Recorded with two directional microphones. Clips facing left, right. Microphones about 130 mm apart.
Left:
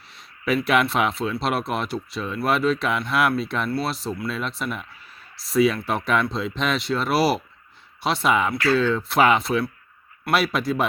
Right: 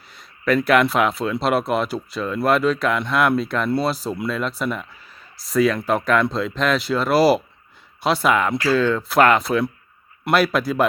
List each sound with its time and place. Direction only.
0.1 s speech: centre (ahead or behind)